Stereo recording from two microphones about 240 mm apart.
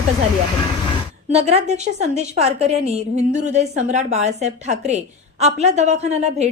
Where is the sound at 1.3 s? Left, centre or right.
Right.